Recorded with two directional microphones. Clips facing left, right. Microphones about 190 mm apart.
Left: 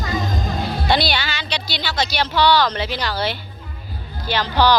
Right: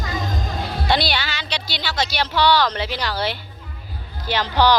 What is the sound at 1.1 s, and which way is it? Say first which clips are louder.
Speech: left 1 dB; 5° right (ahead or behind).